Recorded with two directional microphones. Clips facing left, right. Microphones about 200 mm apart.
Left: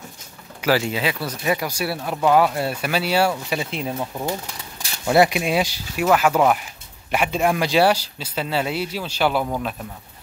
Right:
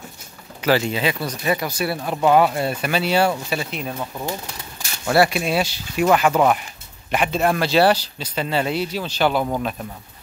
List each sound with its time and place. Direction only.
0.6 s speech: 5° left (ahead or behind)
2.0 s speech: 5° right (ahead or behind)